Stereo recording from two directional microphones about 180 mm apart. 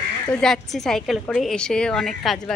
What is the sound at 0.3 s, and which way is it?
A woman's voice, 5° left (ahead or behind).